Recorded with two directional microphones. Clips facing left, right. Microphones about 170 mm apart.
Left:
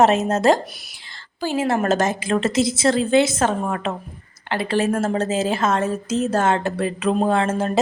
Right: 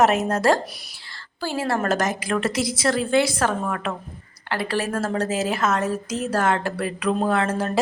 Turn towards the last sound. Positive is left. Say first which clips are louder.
# left 2 dB
turn(degrees=25)  # may be behind; listen again after turning